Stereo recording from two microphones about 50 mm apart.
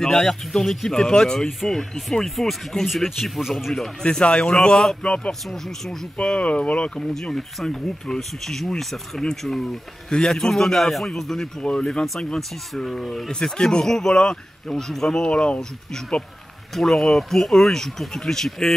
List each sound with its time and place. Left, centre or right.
0.0 s speech: centre
4.0 s speech: left
7.3 s a man's voice: centre
13.3 s speech: centre
16.7 s speech: centre